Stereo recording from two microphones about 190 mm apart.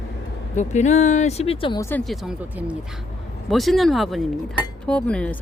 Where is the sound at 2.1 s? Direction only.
Centre (ahead or behind).